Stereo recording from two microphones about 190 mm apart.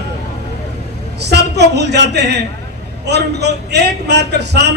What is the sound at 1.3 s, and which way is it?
A man's voice, 60° right (ahead or behind).